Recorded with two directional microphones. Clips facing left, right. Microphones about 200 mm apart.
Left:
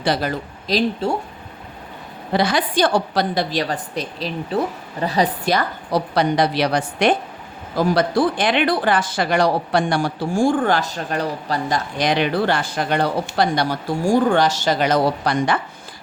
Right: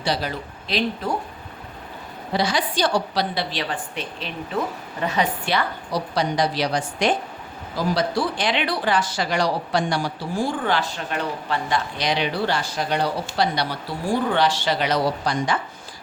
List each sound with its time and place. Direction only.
0.0 s speech: 50° left (ahead or behind)
1.0 s speech: 30° left (ahead or behind)
2.3 s speech: 55° left (ahead or behind)
6.1 s a woman's voice: 60° left (ahead or behind)